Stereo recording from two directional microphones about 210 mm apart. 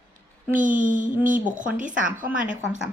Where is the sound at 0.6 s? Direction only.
40° right (ahead or behind).